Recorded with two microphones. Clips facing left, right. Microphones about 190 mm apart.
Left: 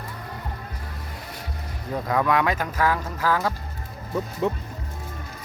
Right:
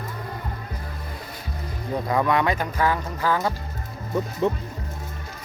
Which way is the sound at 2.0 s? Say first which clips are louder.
Even; centre (ahead or behind).